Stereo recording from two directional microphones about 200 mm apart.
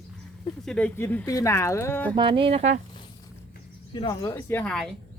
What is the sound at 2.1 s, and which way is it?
Speech, 25° right (ahead or behind).